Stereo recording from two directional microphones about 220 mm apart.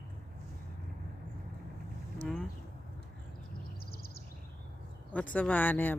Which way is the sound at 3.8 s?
45° left (ahead or behind).